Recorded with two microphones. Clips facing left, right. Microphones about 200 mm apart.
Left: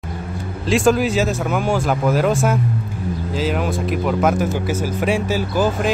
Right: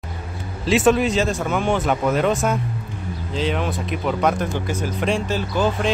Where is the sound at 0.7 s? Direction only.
Centre (ahead or behind).